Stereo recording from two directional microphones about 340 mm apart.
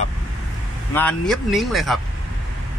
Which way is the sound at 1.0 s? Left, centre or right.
Centre.